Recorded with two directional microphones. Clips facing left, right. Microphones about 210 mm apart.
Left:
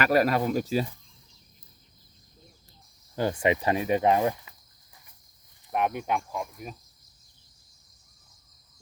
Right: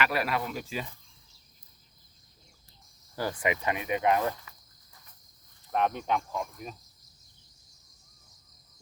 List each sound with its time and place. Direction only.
0.0 s speech: 40° left (ahead or behind)
3.2 s speech: 25° left (ahead or behind)
4.2 s speech: 15° left (ahead or behind)
5.7 s speech: 10° left (ahead or behind)